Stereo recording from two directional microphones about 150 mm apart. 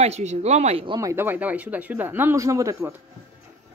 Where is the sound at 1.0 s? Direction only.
20° right (ahead or behind).